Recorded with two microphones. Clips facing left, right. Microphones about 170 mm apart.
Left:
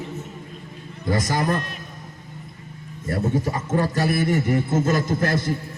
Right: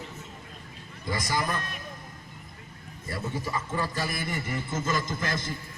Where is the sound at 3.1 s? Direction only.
50° left (ahead or behind).